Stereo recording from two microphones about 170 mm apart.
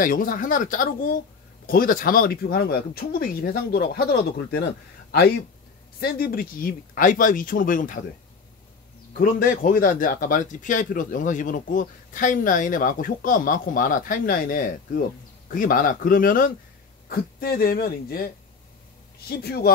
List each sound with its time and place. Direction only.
0.0 s speech: 55° left (ahead or behind)
5.9 s speech: 65° left (ahead or behind)
9.2 s speech: 55° left (ahead or behind)